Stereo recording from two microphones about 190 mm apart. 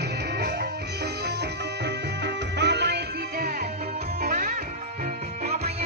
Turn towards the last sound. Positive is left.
turn(degrees=-50)  # may be behind; listen again after turning